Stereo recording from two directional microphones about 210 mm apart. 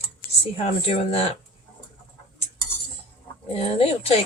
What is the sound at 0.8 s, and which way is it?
Speech, 30° left (ahead or behind).